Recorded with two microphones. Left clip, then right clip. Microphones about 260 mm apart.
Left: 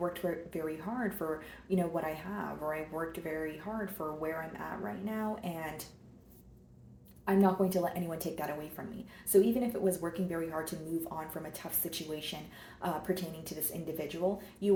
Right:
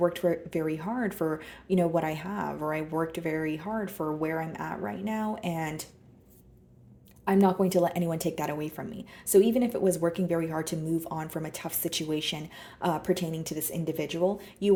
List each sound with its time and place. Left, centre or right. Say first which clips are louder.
0.0 s speech: right 9 dB; right
7.3 s speech: right 4 dB; right